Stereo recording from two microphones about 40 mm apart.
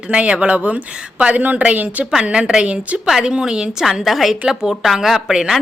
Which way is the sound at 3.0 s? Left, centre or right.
Centre.